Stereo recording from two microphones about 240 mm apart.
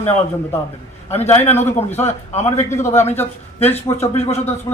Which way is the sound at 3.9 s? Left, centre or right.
Left.